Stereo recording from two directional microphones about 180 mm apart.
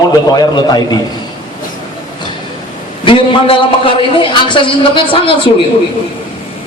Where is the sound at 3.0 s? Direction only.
30° left (ahead or behind).